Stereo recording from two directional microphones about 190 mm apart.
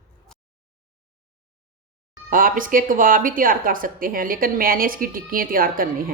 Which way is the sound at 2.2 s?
45° right (ahead or behind).